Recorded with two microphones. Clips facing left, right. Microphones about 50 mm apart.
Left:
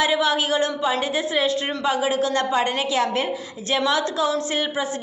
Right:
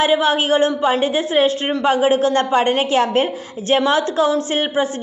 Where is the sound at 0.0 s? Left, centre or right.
Right.